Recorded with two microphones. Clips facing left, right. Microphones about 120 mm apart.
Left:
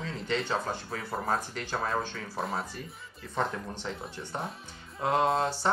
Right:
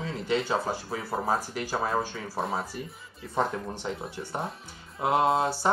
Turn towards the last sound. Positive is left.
turn(degrees=-10)  # may be behind; listen again after turning